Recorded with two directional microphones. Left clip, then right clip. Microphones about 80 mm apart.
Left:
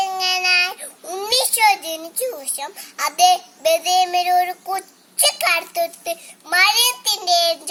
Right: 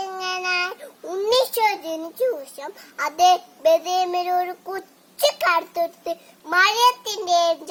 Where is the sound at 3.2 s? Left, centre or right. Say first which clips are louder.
Left 1 dB; right.